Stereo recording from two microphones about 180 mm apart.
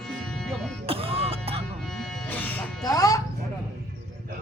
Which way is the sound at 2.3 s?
10° left (ahead or behind).